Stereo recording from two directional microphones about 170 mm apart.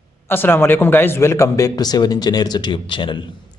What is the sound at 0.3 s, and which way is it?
A man's voice, 15° left (ahead or behind).